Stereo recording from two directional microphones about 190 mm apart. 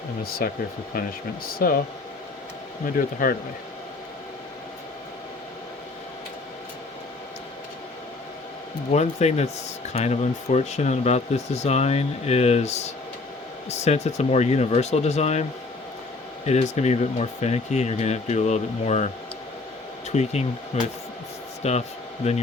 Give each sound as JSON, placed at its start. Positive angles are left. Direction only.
{"t": 0.2, "sound": "speech", "side_deg": 50}
{"t": 3.2, "sound": "speech", "side_deg": 50}
{"t": 8.9, "sound": "speech", "side_deg": 35}
{"t": 16.5, "sound": "speech", "side_deg": 35}
{"t": 20.1, "sound": "speech", "side_deg": 35}